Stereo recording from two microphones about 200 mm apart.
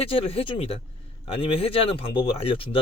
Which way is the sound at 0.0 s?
30° left (ahead or behind).